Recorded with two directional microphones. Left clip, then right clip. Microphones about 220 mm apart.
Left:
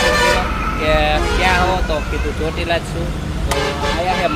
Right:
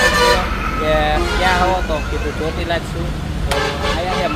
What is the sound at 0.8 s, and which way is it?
Speech, centre (ahead or behind).